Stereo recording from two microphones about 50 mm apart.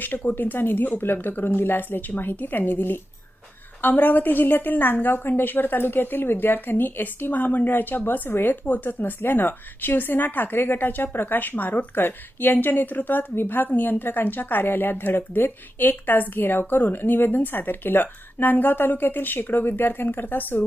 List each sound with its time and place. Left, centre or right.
0.3 s a woman's voice: left